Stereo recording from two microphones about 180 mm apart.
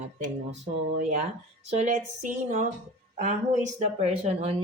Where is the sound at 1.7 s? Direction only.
40° right (ahead or behind).